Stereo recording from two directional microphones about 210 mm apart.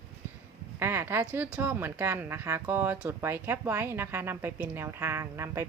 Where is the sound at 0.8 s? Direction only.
10° right (ahead or behind).